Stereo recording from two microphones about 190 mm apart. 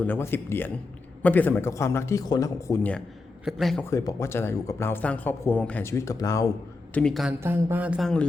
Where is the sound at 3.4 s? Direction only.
Centre (ahead or behind).